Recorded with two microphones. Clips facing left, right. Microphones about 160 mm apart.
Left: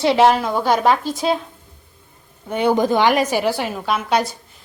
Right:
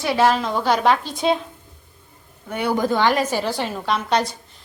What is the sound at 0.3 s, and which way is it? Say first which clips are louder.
A woman's voice: left 2 dB; 10° left (ahead or behind).